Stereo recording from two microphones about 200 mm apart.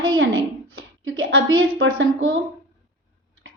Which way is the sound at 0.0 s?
80° right.